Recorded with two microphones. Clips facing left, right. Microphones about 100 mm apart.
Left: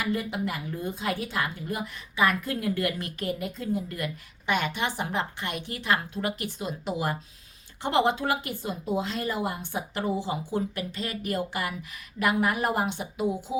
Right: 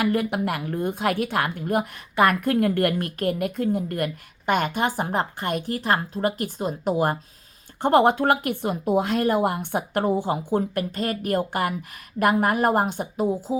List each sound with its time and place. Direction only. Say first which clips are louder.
0.0 s a woman's voice: right 6 dB; 60° right (ahead or behind); by 13.6 s 40° right (ahead or behind)